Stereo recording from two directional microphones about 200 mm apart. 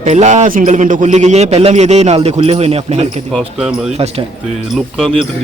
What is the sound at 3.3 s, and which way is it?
Speech, centre (ahead or behind).